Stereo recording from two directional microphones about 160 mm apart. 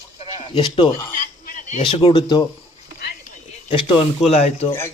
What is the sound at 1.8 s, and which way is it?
Speech, 35° left (ahead or behind).